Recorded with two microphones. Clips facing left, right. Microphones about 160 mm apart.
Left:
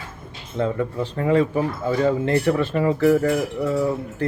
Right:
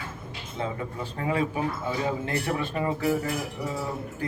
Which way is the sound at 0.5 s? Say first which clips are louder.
Left 9 dB; 65° left (ahead or behind).